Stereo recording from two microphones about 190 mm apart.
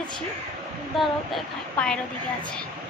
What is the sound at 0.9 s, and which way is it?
Speech, centre (ahead or behind).